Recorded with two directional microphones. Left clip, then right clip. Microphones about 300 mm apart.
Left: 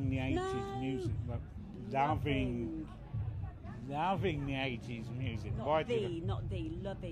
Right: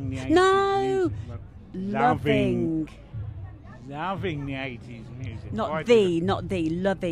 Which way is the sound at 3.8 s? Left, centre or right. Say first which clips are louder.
Right 4 dB; right.